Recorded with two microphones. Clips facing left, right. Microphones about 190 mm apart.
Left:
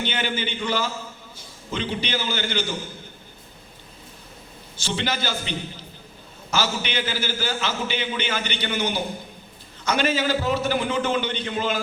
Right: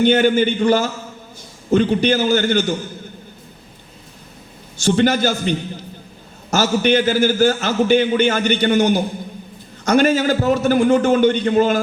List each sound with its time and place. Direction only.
0.1 s a man's voice: 50° right (ahead or behind)
4.8 s a man's voice: 45° right (ahead or behind)